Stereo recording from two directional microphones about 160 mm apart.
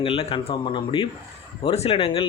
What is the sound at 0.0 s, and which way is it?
Speech, 35° left (ahead or behind).